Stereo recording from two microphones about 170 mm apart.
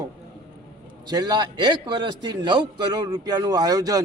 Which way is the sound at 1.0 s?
25° right (ahead or behind).